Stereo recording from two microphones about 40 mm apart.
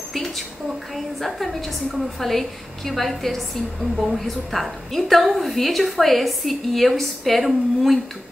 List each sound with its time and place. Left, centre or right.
0.9 s a woman's voice: centre